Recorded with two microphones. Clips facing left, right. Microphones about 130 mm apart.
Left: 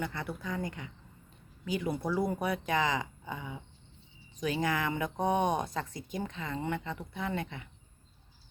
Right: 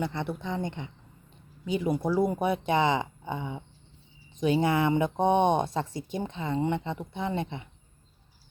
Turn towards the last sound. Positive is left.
turn(degrees=-25)  # may be behind; listen again after turning